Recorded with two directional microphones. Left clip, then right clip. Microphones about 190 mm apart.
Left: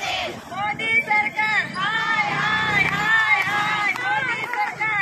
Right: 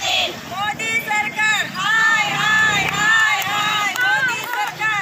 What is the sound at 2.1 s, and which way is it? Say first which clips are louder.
Crowd: right 4 dB; 30° right (ahead or behind).